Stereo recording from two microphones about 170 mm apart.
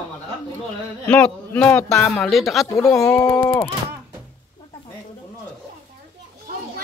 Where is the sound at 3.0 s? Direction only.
15° left (ahead or behind).